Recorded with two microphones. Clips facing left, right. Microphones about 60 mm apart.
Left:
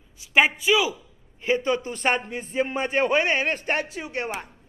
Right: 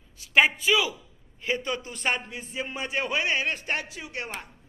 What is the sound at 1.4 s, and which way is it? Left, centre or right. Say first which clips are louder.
A man's voice: left 6 dB; left.